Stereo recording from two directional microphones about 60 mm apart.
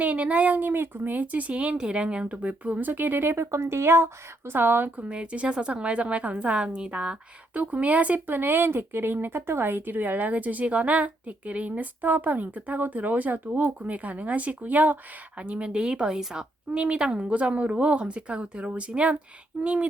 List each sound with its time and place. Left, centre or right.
0.0 s a woman's voice: right
5.0 s a woman's voice: centre